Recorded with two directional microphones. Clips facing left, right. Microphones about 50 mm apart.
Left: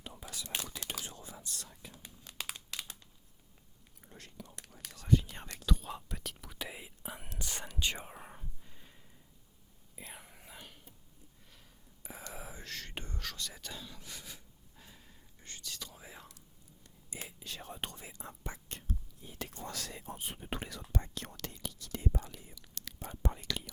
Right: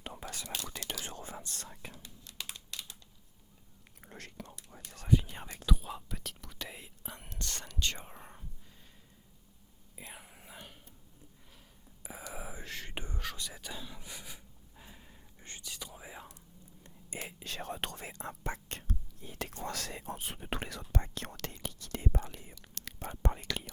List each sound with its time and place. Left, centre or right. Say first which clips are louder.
0.0 s whispering: right 3 dB; right
4.0 s whispering: right 4 dB; right
5.0 s whispering: even; centre
9.9 s whispering: right 1 dB; centre
12.0 s whispering: right 2 dB; centre
16.8 s whispering: right 4 dB; right
17.4 s whispering: right 4 dB; right